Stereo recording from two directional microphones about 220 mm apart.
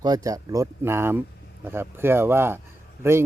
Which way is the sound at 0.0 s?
15° right (ahead or behind).